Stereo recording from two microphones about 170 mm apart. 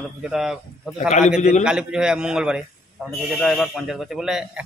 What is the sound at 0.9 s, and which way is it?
Speech, 45° left (ahead or behind).